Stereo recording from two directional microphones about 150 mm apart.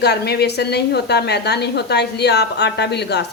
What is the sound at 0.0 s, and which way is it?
A woman's voice, 90° left.